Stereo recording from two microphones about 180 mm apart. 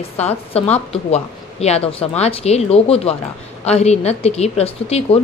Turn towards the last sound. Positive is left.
turn(degrees=35)  # may be behind; listen again after turning